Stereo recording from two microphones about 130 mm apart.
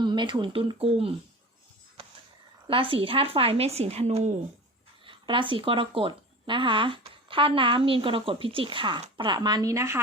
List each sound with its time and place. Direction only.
0.0 s speech: 35° right (ahead or behind)
2.0 s a sound: 45° right (ahead or behind)
2.6 s a woman's voice: 45° right (ahead or behind)
5.0 s speech: 40° right (ahead or behind); by 10.0 s 25° right (ahead or behind)